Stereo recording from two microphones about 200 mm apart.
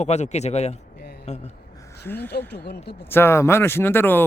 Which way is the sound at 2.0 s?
10° left (ahead or behind).